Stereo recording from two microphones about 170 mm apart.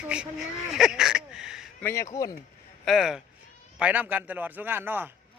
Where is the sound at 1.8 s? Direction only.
15° left (ahead or behind).